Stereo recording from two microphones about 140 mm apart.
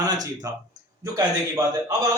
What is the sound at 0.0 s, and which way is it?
A man's voice, 25° right (ahead or behind).